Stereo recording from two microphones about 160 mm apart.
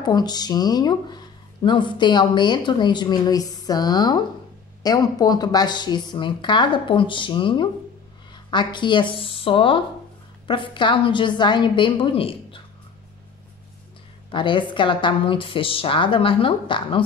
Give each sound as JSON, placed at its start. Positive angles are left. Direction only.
{"t": 0.0, "sound": "a woman's voice", "side_deg": 25}
{"t": 14.3, "sound": "a woman's voice", "side_deg": 30}